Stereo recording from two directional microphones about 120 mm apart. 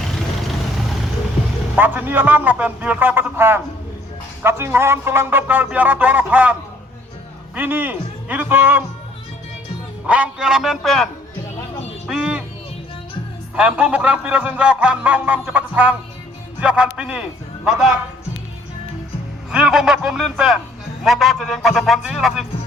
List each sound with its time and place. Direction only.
1.7 s speech: 15° right (ahead or behind)
10.1 s a man's voice: 10° right (ahead or behind)
13.6 s speech: 10° right (ahead or behind)
19.5 s a man's voice: 5° right (ahead or behind)